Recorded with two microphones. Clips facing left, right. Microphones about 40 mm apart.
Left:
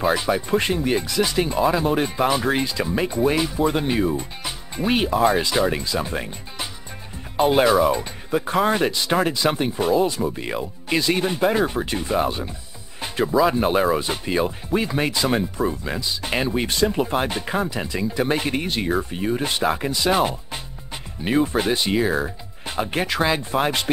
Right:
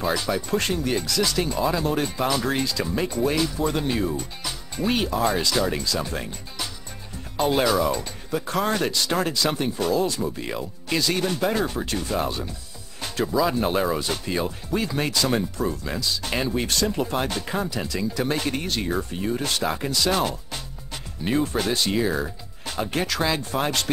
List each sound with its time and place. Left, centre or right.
0.0 s speech: left